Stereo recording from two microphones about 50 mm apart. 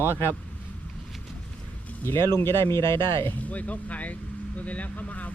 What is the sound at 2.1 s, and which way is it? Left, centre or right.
Speech, left.